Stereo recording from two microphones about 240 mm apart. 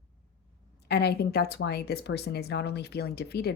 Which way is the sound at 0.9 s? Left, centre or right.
Left.